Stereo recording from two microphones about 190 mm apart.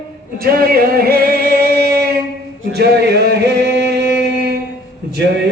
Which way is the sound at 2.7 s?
60° right (ahead or behind).